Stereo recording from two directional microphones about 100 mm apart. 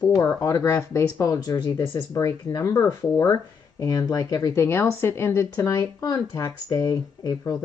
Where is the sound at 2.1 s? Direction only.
30° left (ahead or behind).